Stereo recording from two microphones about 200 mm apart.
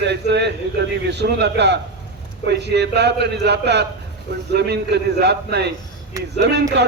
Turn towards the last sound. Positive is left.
turn(degrees=-60)  # may be behind; listen again after turning